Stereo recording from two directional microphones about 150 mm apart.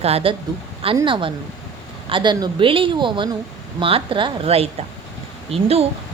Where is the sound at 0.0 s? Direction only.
40° right (ahead or behind).